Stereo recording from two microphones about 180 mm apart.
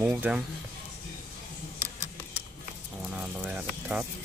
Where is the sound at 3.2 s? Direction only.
5° right (ahead or behind).